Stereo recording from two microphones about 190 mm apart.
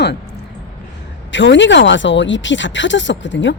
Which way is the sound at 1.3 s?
75° left (ahead or behind).